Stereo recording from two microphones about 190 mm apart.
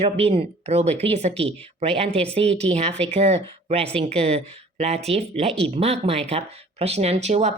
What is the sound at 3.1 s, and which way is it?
Speech, 35° right (ahead or behind).